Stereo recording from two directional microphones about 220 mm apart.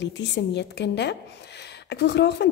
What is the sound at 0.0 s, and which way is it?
Speech, 50° left (ahead or behind).